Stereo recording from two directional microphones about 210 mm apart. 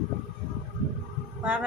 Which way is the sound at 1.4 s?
5° right (ahead or behind).